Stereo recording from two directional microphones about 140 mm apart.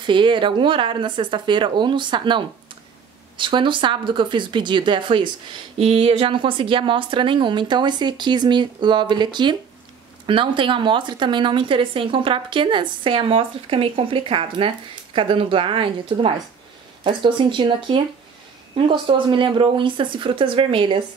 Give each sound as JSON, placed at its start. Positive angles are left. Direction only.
{"t": 0.0, "sound": "speech", "side_deg": -35}